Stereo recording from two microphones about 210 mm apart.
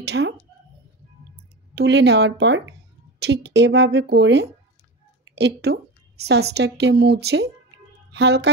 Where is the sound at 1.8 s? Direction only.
55° right (ahead or behind).